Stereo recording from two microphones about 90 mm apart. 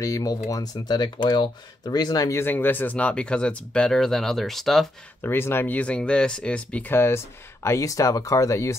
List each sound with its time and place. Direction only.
0.0 s speech: 40° left (ahead or behind)
2.3 s speech: 20° left (ahead or behind); by 4.8 s centre (ahead or behind)
5.2 s speech: 25° left (ahead or behind)
7.6 s speech: 35° left (ahead or behind)